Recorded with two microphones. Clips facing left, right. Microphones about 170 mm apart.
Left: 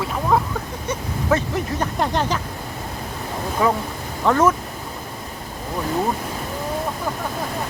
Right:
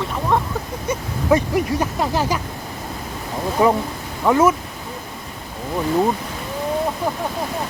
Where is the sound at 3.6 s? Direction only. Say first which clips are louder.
Right 4 dB; 20° right (ahead or behind).